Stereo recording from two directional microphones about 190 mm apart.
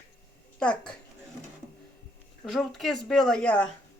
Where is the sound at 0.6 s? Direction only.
5° left (ahead or behind).